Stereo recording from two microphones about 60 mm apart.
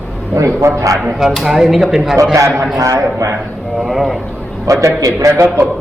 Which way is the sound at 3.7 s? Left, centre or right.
Centre.